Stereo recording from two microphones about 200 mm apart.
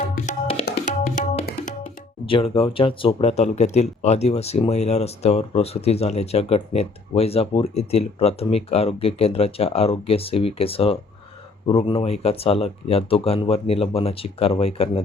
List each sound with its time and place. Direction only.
0.2 s tabla: 35° left (ahead or behind)
0.6 s music: 45° left (ahead or behind)
2.2 s speech: 25° left (ahead or behind)